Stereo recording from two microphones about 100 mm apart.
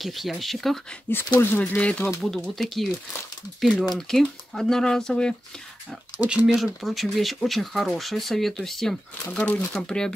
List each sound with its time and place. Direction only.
0.0 s speech: centre (ahead or behind)
1.1 s speech: 20° left (ahead or behind)
2.2 s speech: centre (ahead or behind)
4.1 s speech: 5° left (ahead or behind)
6.1 s speech: 15° right (ahead or behind)
6.4 s speech: centre (ahead or behind)